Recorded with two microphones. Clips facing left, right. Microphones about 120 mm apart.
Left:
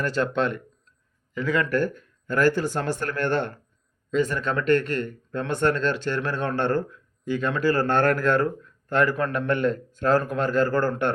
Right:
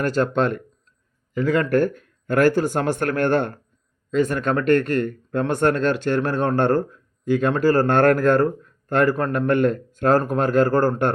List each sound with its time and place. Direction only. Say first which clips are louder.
0.0 s a man's voice: right 4 dB; 40° right (ahead or behind)